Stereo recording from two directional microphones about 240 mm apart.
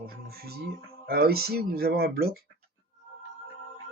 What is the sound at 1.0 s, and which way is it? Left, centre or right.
Speech, right.